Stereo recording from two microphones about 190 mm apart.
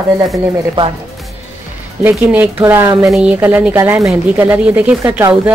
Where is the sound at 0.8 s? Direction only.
25° right (ahead or behind).